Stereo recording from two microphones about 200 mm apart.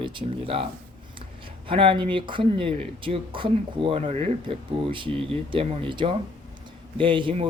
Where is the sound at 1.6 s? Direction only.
25° right (ahead or behind).